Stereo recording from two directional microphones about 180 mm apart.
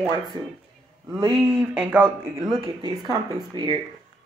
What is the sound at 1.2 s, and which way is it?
Speech, 15° right (ahead or behind).